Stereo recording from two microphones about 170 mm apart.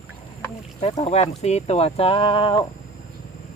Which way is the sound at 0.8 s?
35° left (ahead or behind).